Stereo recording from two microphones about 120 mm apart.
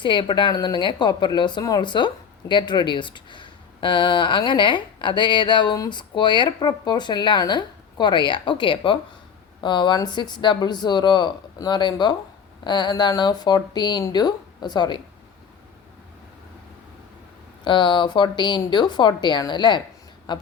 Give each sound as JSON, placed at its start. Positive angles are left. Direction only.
{"t": 0.0, "sound": "speech", "side_deg": 40}
{"t": 17.6, "sound": "speech", "side_deg": 40}